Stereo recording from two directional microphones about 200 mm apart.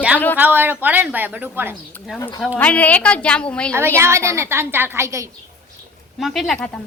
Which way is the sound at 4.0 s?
15° right (ahead or behind).